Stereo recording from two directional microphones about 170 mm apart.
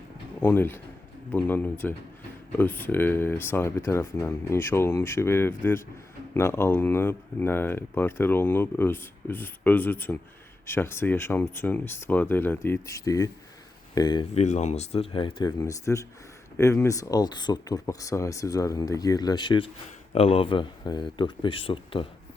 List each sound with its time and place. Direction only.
0.4 s speech: 10° left (ahead or behind)
14.3 s speech: 45° left (ahead or behind)